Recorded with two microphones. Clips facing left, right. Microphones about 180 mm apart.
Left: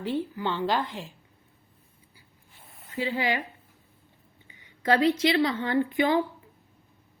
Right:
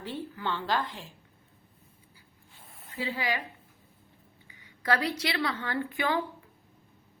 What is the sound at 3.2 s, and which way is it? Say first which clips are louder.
Speech: left 4 dB; 25° left (ahead or behind).